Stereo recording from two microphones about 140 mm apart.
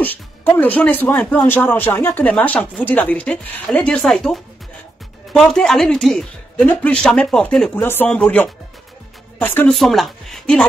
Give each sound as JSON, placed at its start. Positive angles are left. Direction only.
{"t": 0.0, "sound": "speech", "side_deg": 10}
{"t": 9.7, "sound": "speech", "side_deg": 0}